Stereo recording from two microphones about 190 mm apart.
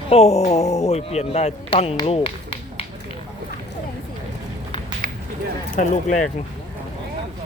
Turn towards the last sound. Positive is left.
turn(degrees=40)  # may be behind; listen again after turning